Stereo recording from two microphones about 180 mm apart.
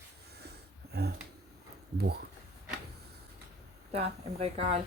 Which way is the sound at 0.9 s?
65° right (ahead or behind).